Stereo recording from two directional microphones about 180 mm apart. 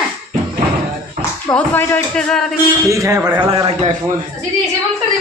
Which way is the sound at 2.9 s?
15° right (ahead or behind).